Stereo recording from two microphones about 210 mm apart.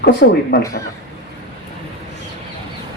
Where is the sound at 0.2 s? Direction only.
55° left (ahead or behind).